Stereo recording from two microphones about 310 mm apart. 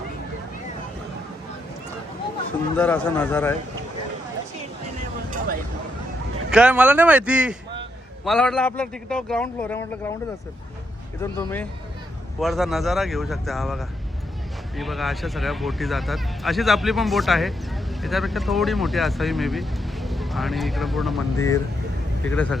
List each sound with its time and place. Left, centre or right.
2.7 s a man's voice: centre
6.5 s speech: centre
11.2 s a man's voice: centre